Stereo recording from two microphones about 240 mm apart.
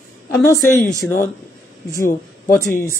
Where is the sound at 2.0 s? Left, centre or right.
Left.